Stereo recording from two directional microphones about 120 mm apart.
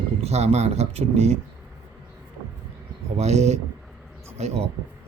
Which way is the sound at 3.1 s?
65° right (ahead or behind).